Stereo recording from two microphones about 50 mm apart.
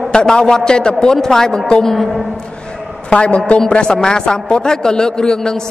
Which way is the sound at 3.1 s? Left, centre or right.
Left.